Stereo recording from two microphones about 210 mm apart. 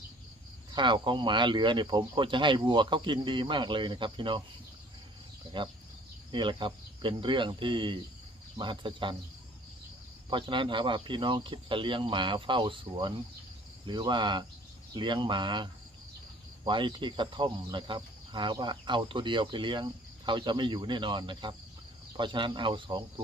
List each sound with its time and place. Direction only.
0.7 s speech: 20° right (ahead or behind)
6.3 s speech: 25° right (ahead or behind)
10.2 s speech: 20° right (ahead or behind)